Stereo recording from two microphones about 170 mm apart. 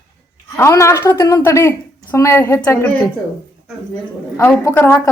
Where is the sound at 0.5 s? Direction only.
15° left (ahead or behind).